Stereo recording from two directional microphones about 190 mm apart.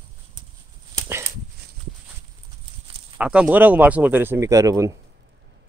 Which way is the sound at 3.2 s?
5° right (ahead or behind).